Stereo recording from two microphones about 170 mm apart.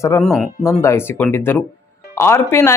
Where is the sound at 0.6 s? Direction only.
15° left (ahead or behind).